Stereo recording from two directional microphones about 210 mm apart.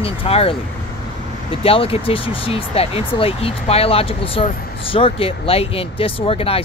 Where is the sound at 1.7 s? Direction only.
25° left (ahead or behind).